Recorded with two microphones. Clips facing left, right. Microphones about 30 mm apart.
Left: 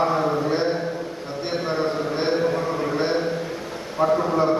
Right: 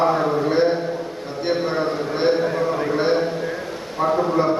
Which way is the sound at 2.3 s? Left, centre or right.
Right.